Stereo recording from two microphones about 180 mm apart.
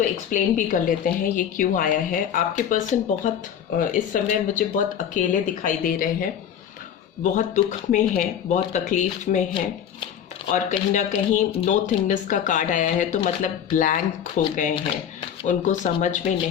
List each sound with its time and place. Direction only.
0.3 s speech: 45° left (ahead or behind)
7.3 s speech: 45° left (ahead or behind)
9.6 s speech: 30° left (ahead or behind)
10.5 s speech: 45° left (ahead or behind)
15.4 s speech: 45° left (ahead or behind)